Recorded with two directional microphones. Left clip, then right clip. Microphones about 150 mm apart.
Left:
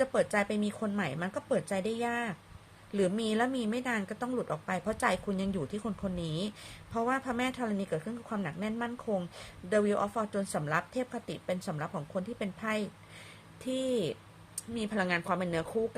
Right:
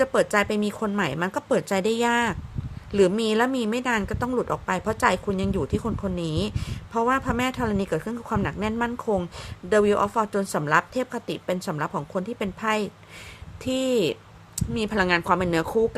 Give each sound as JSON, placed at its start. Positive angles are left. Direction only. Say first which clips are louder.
{"t": 0.0, "sound": "a woman's voice", "louder": "right 8 dB", "side_deg": -25}
{"t": 2.9, "sound": "a woman's voice", "louder": "right 10 dB", "side_deg": -25}